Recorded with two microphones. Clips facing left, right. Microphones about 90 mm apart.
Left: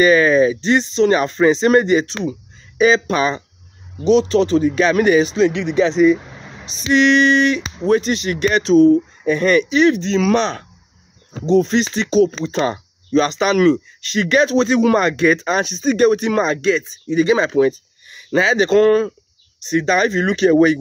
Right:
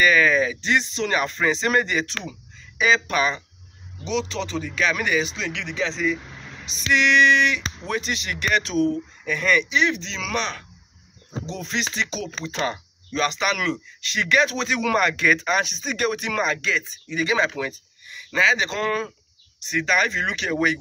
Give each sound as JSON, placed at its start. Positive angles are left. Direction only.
{"t": 0.0, "sound": "speech", "side_deg": 30}
{"t": 5.9, "sound": "vehicle", "side_deg": 25}
{"t": 6.9, "sound": "speech", "side_deg": 35}
{"t": 10.3, "sound": "speech", "side_deg": 30}